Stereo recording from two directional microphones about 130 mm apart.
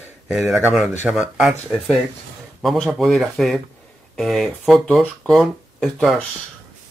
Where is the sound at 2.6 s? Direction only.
5° left (ahead or behind).